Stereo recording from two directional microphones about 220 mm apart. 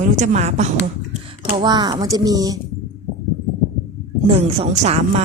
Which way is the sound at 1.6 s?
20° right (ahead or behind).